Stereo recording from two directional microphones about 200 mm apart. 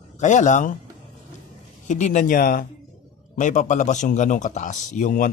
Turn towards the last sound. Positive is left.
turn(degrees=40)  # may be behind; listen again after turning